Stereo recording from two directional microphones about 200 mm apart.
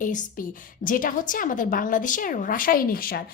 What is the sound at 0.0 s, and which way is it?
A woman's voice, 40° left (ahead or behind).